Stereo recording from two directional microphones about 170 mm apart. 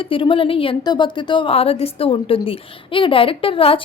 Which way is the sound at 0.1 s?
30° left (ahead or behind).